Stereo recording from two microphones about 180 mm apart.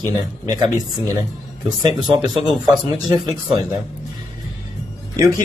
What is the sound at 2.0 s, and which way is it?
Speech, 20° right (ahead or behind).